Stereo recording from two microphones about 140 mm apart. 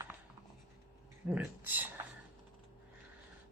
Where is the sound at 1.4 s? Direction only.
10° right (ahead or behind).